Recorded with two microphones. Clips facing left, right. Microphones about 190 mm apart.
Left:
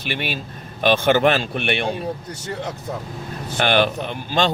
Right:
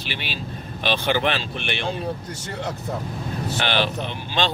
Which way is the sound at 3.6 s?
50° left (ahead or behind).